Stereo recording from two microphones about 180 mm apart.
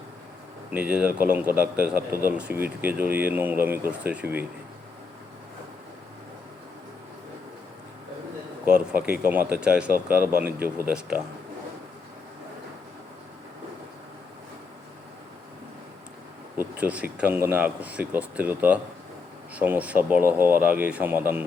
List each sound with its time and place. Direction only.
0.7 s speech: 5° right (ahead or behind)
8.6 s speech: 5° right (ahead or behind)
16.6 s speech: 10° right (ahead or behind)